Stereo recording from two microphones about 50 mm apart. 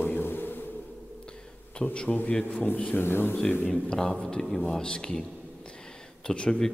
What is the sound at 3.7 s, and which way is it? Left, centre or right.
A man's voice, centre.